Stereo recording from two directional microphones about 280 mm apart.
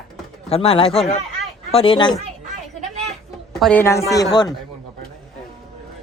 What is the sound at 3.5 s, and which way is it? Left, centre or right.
A woman's voice, centre.